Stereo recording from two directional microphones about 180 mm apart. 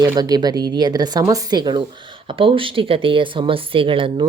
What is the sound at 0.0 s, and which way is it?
Speech, 20° right (ahead or behind).